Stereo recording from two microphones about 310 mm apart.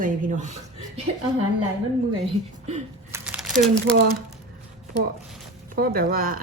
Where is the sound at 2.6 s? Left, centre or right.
Right.